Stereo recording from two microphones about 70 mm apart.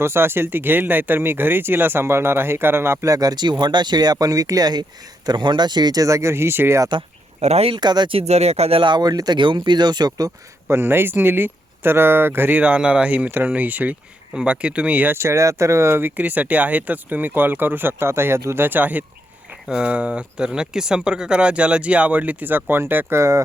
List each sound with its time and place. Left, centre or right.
0.0 s speech: right
3.1 s speech: right
7.8 s speech: right
8.9 s speech: right
10.7 s speech: right
15.1 s speech: right